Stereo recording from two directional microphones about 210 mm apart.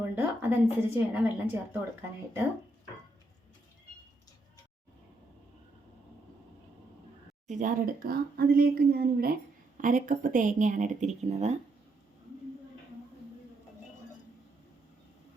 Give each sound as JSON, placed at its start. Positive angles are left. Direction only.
{"t": 0.0, "sound": "a woman's voice", "side_deg": -10}
{"t": 7.4, "sound": "speech", "side_deg": -35}